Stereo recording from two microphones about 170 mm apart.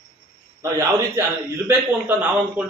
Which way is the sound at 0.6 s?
15° right (ahead or behind).